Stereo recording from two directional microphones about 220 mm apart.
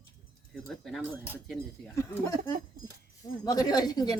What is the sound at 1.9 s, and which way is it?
Speech, 15° left (ahead or behind).